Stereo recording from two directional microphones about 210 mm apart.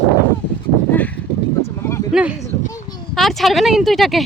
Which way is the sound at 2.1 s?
5° right (ahead or behind).